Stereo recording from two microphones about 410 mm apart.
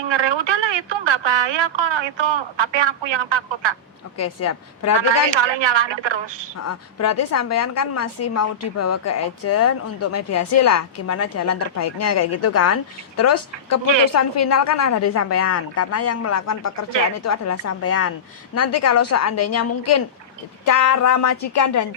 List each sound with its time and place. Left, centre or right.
0.0 s speech: right
4.2 s a woman's voice: left
5.0 s speech: right
6.6 s a woman's voice: left